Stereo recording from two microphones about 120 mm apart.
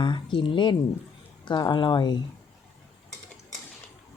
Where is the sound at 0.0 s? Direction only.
40° left (ahead or behind).